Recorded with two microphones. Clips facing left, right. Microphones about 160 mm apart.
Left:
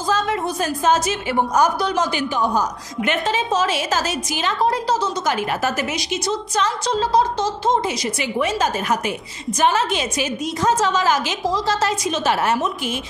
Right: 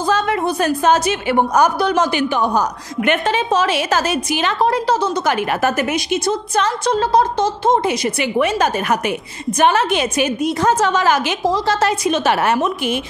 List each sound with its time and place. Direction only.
0.1 s a woman's voice: 60° right (ahead or behind)